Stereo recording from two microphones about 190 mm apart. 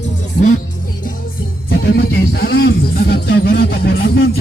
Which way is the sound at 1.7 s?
55° left (ahead or behind).